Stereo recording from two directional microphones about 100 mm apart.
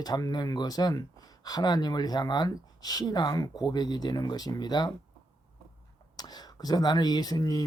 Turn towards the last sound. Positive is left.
turn(degrees=40)  # may be behind; listen again after turning